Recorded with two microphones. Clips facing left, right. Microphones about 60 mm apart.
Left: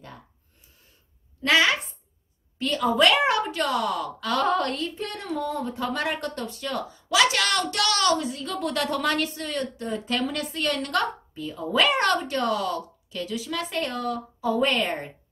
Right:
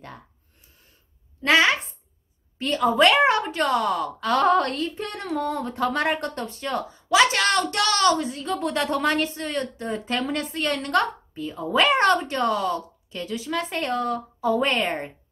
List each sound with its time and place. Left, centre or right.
1.4 s a woman's voice: right
6.0 s a woman's voice: right